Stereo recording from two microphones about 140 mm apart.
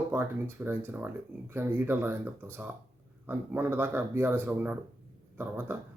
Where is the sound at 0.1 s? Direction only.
15° right (ahead or behind).